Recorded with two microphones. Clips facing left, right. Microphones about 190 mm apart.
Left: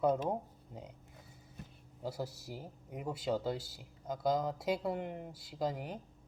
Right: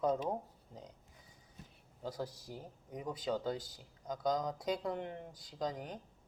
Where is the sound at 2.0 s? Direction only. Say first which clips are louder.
Left 1 dB; 10° left (ahead or behind).